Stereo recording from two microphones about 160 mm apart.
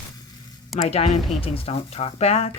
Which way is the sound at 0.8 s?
40° left (ahead or behind).